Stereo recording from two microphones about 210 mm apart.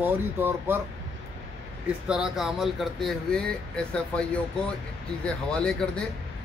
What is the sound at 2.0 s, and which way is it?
Speech, 5° right (ahead or behind).